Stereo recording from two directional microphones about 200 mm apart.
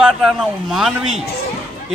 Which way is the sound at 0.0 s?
5° right (ahead or behind).